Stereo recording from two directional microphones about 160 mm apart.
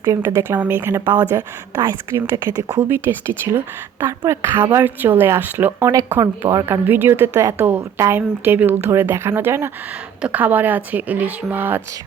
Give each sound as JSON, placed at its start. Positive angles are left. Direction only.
{"t": 0.0, "sound": "a woman's voice", "side_deg": -15}
{"t": 4.2, "sound": "a woman's voice", "side_deg": -15}